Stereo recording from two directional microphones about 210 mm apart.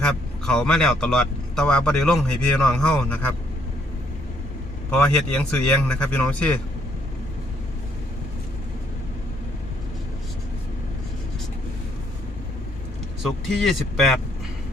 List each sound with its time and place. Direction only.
0.0 s speech: 5° left (ahead or behind)
5.1 s speech: 5° left (ahead or behind)
13.2 s speech: centre (ahead or behind)